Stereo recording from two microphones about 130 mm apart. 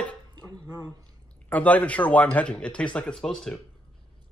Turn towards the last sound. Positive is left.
turn(degrees=5)  # may be behind; listen again after turning